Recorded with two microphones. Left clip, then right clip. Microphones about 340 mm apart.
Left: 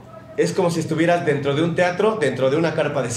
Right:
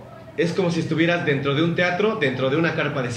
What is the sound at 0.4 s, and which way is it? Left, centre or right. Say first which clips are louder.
A man's voice: left 3 dB; left.